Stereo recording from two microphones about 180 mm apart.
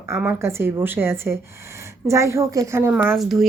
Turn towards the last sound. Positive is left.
turn(degrees=0)  # may be behind; listen again after turning